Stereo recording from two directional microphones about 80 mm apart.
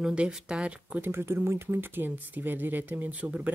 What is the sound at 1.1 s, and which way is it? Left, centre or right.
Speech, right.